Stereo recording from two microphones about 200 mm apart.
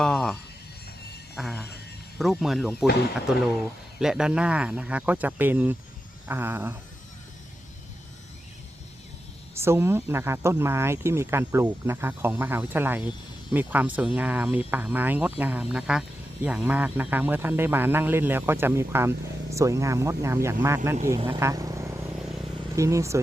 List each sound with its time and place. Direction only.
0.0 s a sound: centre (ahead or behind)
1.4 s speech: centre (ahead or behind)
4.0 s speech: 5° right (ahead or behind)
9.6 s speech: 10° right (ahead or behind)